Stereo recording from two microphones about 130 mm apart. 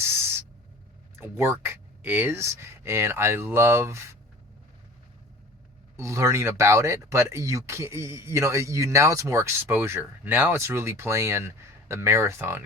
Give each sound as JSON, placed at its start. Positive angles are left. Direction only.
{"t": 1.2, "sound": "speech", "side_deg": -20}
{"t": 6.0, "sound": "speech", "side_deg": -25}